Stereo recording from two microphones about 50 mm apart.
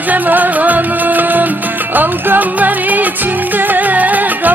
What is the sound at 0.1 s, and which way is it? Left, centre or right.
Music, right.